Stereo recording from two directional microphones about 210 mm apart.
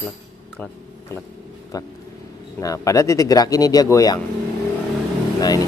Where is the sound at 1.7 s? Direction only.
15° left (ahead or behind).